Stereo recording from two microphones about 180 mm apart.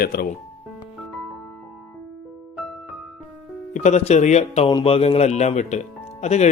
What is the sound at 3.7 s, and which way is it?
Speech, 40° left (ahead or behind).